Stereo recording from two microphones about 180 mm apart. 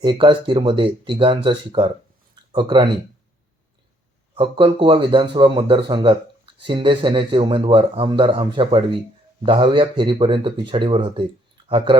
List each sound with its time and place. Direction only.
0.0 s a man's voice: 25° right (ahead or behind)
4.4 s a man's voice: 30° right (ahead or behind)